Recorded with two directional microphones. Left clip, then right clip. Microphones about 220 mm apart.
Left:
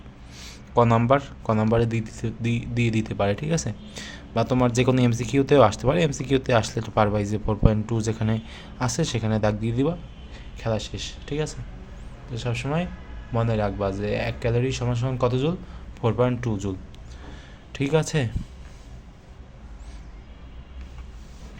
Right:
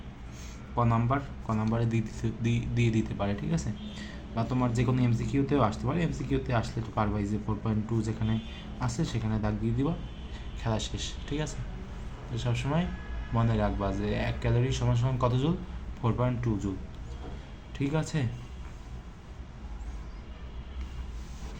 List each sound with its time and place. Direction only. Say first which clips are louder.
0.4 s a man's voice: left 10 dB; 50° left (ahead or behind)
10.3 s a man's voice: left 6 dB; 30° left (ahead or behind); by 16.6 s 45° left (ahead or behind)
17.7 s a man's voice: left 9 dB; 45° left (ahead or behind)